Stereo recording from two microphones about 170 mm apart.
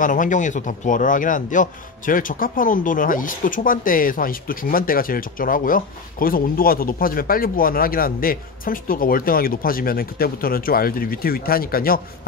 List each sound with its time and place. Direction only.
0.0 s a man's voice: 50° left (ahead or behind)